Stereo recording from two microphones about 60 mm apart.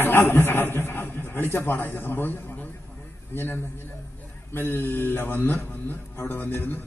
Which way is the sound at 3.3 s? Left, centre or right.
Left.